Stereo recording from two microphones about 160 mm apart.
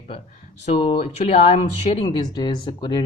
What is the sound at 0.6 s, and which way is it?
Speech, 45° left (ahead or behind).